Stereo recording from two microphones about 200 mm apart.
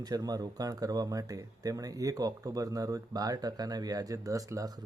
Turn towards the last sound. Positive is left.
turn(degrees=-15)  # may be behind; listen again after turning